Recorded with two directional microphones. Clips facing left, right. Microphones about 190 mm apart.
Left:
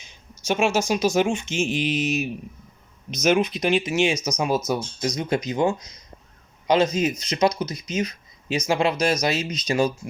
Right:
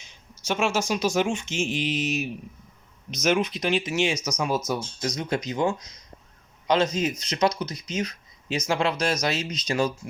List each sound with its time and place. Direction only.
0.4 s speech: 15° left (ahead or behind)
4.7 s speech: 15° left (ahead or behind)